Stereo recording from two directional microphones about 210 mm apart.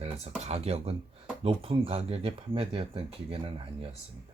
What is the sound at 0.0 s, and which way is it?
Speech, 30° right (ahead or behind).